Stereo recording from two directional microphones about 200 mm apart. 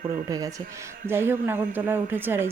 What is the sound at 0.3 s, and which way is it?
A woman's voice, 15° right (ahead or behind).